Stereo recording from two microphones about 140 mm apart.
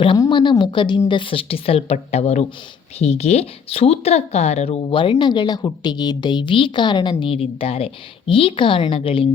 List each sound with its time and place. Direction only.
0.2 s speech: 35° left (ahead or behind)